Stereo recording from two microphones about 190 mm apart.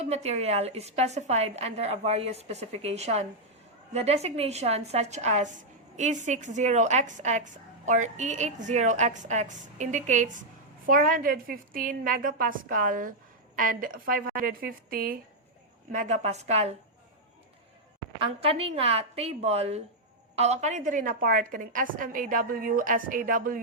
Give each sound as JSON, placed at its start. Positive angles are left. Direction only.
{"t": 0.0, "sound": "a woman's voice", "side_deg": -35}
{"t": 15.9, "sound": "a woman's voice", "side_deg": -40}
{"t": 18.2, "sound": "a woman's voice", "side_deg": -30}